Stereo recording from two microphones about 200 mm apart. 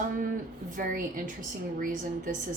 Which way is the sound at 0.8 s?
40° right (ahead or behind).